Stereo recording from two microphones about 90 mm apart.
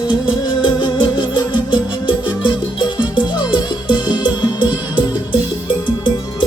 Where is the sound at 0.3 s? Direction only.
60° left (ahead or behind).